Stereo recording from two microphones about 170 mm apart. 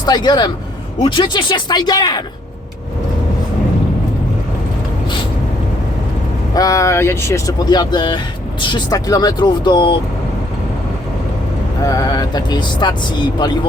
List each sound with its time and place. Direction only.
0.0 s speech: 25° left (ahead or behind)
6.5 s speech: 20° left (ahead or behind)
11.9 s speech: 25° left (ahead or behind)